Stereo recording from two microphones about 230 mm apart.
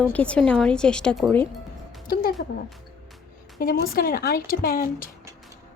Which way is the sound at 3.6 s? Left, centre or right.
Left.